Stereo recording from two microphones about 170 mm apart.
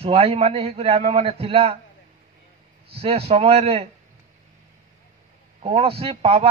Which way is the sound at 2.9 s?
35° right (ahead or behind).